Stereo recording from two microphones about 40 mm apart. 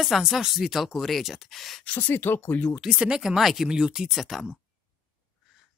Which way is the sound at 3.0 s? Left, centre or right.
Centre.